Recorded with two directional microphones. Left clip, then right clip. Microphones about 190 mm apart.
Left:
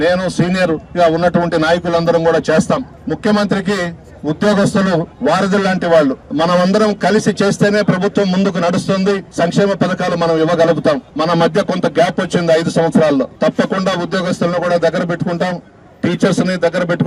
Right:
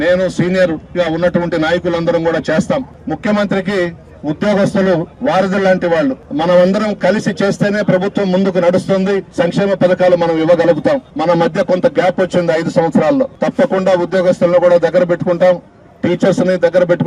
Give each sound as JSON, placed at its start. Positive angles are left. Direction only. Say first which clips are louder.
{"t": 0.0, "sound": "a man's voice", "louder": "right 1 dB", "side_deg": 45}